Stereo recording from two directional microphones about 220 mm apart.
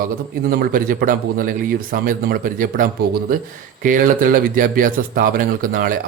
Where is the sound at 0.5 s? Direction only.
40° right (ahead or behind).